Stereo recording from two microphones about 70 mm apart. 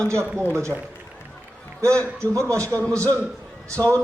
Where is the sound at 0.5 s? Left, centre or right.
Right.